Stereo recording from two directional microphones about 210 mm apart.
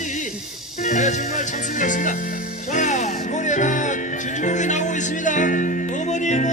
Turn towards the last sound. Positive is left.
turn(degrees=35)  # may be behind; listen again after turning